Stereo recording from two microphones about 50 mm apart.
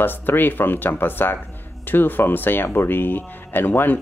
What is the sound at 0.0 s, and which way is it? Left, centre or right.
Speech, left.